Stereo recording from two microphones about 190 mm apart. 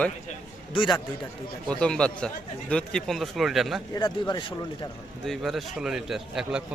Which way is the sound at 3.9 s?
20° left (ahead or behind).